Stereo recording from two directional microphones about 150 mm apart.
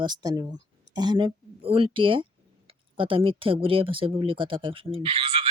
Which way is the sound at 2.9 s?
35° right (ahead or behind).